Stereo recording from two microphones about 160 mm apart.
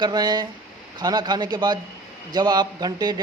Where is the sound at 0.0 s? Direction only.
25° right (ahead or behind).